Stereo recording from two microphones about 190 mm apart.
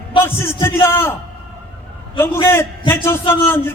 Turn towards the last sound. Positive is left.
turn(degrees=10)  # may be behind; listen again after turning